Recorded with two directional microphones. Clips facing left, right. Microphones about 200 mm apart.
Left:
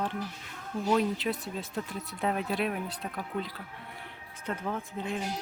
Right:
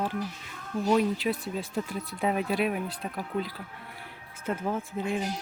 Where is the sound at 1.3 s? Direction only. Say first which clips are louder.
Right 3 dB; 20° left (ahead or behind).